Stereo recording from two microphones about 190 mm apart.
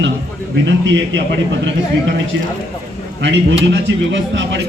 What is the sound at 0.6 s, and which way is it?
A man's voice, 75° right (ahead or behind).